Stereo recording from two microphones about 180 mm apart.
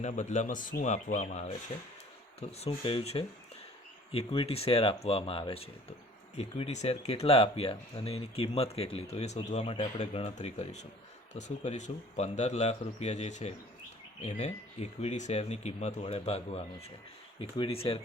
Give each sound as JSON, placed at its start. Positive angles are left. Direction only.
{"t": 0.0, "sound": "speech", "side_deg": 40}